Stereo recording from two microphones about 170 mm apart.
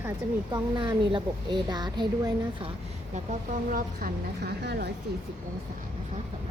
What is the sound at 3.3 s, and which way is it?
A woman's voice, 55° right (ahead or behind).